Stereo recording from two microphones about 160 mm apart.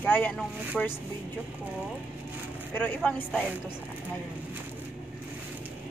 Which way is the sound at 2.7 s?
10° left (ahead or behind).